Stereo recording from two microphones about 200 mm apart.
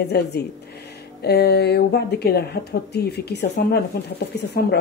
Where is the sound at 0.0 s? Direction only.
55° left (ahead or behind).